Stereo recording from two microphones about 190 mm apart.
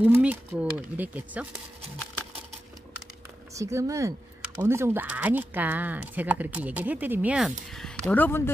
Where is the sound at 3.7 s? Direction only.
15° right (ahead or behind).